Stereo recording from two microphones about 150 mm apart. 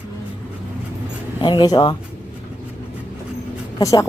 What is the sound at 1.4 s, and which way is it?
Speech, 30° left (ahead or behind).